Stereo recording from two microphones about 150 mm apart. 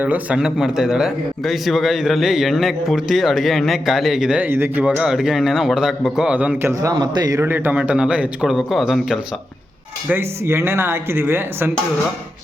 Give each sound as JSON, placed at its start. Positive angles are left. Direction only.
{"t": 0.0, "sound": "speech", "side_deg": -10}
{"t": 6.9, "sound": "a man's voice", "side_deg": -30}
{"t": 7.4, "sound": "speech", "side_deg": -15}
{"t": 10.1, "sound": "speech", "side_deg": -15}